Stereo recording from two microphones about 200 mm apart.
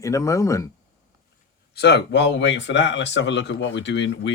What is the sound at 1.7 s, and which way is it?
Speech, 55° left (ahead or behind).